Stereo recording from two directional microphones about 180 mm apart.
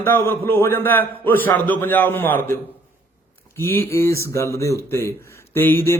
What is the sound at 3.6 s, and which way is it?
Speech, 10° left (ahead or behind).